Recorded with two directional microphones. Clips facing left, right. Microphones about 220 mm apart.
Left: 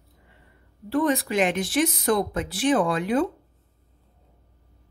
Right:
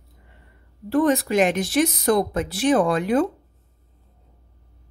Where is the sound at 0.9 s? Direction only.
45° right (ahead or behind).